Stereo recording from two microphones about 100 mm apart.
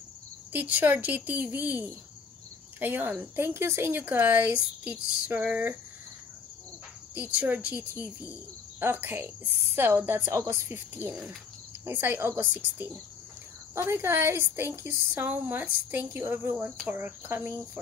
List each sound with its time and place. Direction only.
0.5 s a woman's voice: 15° right (ahead or behind)
7.2 s a woman's voice: 15° right (ahead or behind)